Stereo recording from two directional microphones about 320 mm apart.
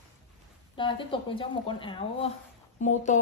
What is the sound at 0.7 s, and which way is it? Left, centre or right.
A woman's voice, centre.